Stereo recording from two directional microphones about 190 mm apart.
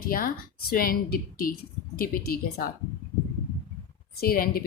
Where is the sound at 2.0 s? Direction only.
50° left (ahead or behind).